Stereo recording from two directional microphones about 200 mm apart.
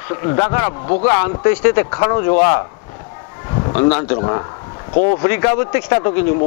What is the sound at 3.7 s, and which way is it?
Speech, 15° left (ahead or behind).